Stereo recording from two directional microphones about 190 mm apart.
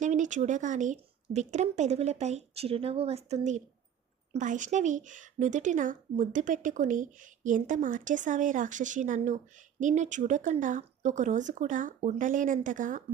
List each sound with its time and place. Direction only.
0.0 s speech: 40° right (ahead or behind)